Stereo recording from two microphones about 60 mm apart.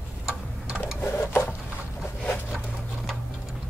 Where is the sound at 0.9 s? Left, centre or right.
Left.